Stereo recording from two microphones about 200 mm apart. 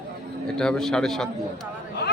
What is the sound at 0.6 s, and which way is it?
Speech, 5° left (ahead or behind).